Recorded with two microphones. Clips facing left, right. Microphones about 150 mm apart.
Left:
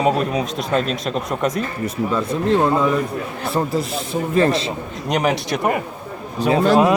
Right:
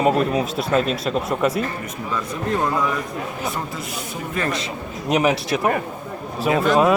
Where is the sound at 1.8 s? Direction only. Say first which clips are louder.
Left 6 dB; 30° left (ahead or behind).